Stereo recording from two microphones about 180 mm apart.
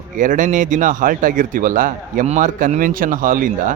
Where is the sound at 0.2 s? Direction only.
45° right (ahead or behind).